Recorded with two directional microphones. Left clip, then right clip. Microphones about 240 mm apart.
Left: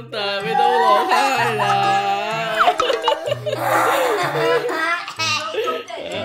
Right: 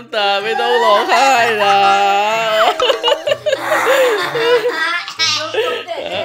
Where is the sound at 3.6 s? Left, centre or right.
Left.